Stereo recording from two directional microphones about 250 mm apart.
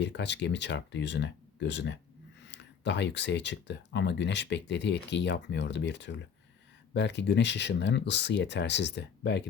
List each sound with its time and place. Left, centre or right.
0.0 s speech: left